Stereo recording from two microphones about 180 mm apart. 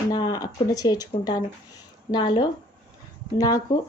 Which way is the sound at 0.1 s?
20° left (ahead or behind).